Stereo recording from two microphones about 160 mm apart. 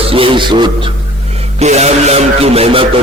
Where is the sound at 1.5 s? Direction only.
45° right (ahead or behind).